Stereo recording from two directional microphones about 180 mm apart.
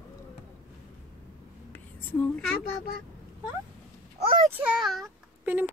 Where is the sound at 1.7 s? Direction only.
10° left (ahead or behind).